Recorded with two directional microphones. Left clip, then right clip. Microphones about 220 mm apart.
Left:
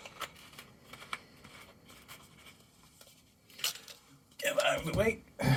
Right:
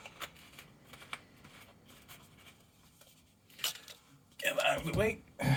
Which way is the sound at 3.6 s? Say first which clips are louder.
Left 1 dB; 15° right (ahead or behind).